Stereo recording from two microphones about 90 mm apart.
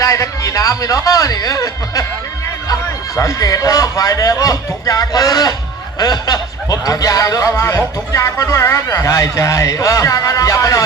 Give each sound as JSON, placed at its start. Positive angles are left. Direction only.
{"t": 0.0, "sound": "a man's voice", "side_deg": 35}
{"t": 3.2, "sound": "a man's voice", "side_deg": 40}